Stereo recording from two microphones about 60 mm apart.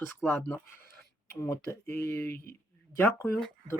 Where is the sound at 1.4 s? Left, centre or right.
Left.